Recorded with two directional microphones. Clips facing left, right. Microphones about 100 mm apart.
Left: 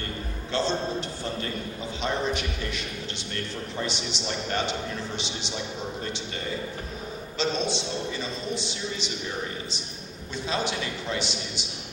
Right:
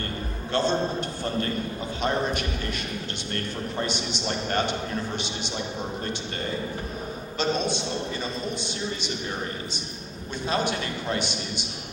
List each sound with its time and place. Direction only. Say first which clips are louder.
0.5 s a man's voice: right 2 dB; 50° right (ahead or behind)
2.0 s a man's voice: right 2 dB; 50° right (ahead or behind)
7.3 s a man's voice: right 1 dB; 50° right (ahead or behind)
10.5 s a man's voice: right 2 dB; 50° right (ahead or behind)